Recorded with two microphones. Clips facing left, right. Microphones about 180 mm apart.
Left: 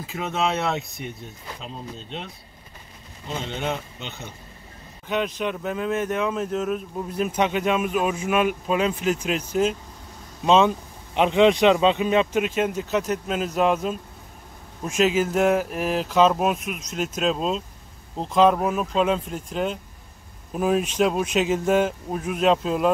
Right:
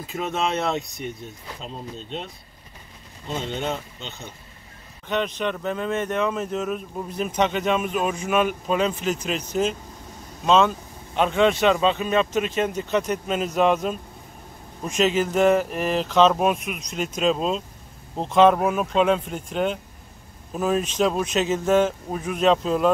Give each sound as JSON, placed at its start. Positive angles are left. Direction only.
{"t": 0.1, "sound": "speech", "side_deg": 0}
{"t": 3.3, "sound": "speech", "side_deg": 5}